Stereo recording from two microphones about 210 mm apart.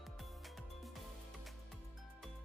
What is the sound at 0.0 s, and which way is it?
Music, centre (ahead or behind).